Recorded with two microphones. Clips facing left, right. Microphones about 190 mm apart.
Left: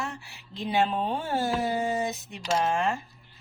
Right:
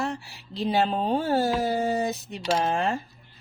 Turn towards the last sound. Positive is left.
turn(degrees=-35)  # may be behind; listen again after turning